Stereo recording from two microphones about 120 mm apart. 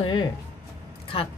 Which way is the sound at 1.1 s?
50° left (ahead or behind).